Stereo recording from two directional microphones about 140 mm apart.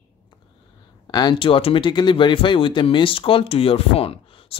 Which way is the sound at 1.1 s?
35° left (ahead or behind).